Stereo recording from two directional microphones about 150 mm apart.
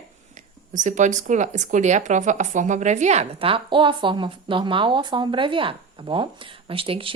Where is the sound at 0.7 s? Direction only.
55° right (ahead or behind).